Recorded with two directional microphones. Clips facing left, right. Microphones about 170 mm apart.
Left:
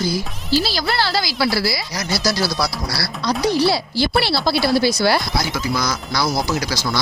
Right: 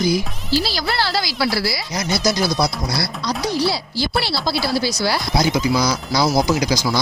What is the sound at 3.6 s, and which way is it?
Speech, 60° left (ahead or behind).